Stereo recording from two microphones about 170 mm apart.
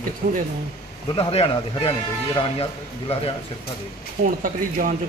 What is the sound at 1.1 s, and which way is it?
A man's voice, 35° left (ahead or behind).